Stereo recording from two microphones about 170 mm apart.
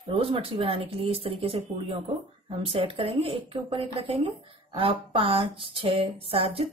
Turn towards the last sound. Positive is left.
turn(degrees=-35)  # may be behind; listen again after turning